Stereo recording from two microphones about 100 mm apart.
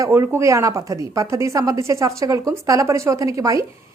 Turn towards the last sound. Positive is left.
turn(degrees=-35)  # may be behind; listen again after turning